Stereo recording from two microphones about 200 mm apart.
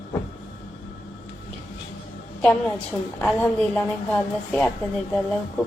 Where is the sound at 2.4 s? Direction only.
5° left (ahead or behind).